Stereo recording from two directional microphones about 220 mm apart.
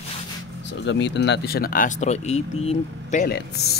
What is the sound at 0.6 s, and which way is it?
Speech, 55° left (ahead or behind).